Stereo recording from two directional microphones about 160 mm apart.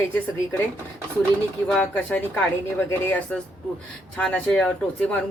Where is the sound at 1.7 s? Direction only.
5° left (ahead or behind).